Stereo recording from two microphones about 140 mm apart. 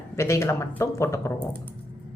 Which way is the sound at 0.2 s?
20° left (ahead or behind).